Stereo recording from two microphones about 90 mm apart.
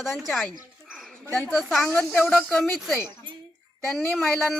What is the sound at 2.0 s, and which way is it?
Speech, 20° left (ahead or behind).